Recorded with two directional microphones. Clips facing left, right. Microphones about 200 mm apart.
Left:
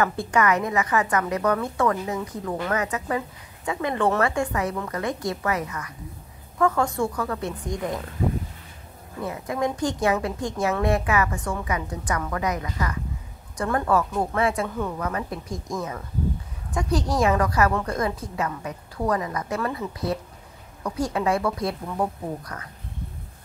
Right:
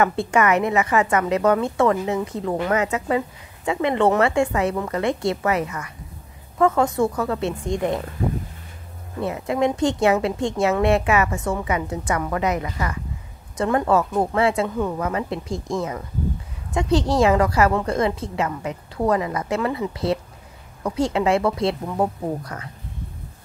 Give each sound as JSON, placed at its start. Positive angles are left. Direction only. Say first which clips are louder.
{"t": 0.2, "sound": "a woman's voice", "louder": "right 3 dB", "side_deg": -25}
{"t": 6.6, "sound": "a woman's voice", "louder": "right 4 dB", "side_deg": -20}
{"t": 9.2, "sound": "a woman's voice", "louder": "right 5 dB", "side_deg": -25}